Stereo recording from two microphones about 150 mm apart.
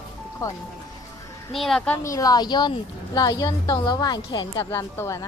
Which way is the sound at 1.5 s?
Centre (ahead or behind).